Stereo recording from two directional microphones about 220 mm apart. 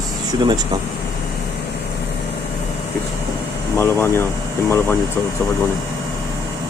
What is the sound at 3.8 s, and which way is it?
Speech, 10° left (ahead or behind).